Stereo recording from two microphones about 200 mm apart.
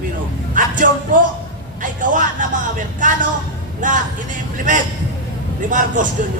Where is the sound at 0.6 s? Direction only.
40° right (ahead or behind).